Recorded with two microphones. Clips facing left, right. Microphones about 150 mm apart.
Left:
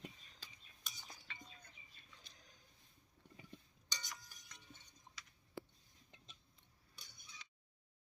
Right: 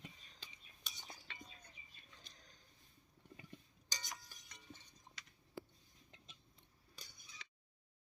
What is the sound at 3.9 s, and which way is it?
Chink, 90° right.